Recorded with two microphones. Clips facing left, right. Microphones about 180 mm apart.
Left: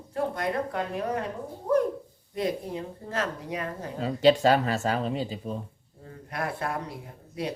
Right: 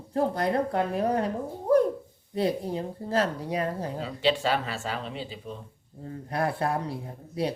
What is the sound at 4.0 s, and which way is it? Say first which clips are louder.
Speech: left 7 dB; 45° left (ahead or behind).